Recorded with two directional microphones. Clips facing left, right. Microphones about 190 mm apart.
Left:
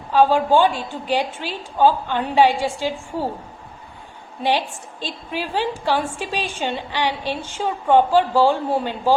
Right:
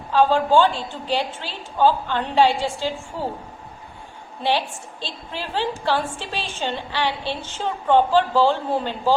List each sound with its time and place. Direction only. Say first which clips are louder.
0.1 s a woman's voice: left 1 dB; 15° left (ahead or behind)
4.4 s a woman's voice: left 1 dB; 15° left (ahead or behind)